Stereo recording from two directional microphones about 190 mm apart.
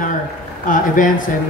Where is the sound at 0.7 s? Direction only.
45° left (ahead or behind).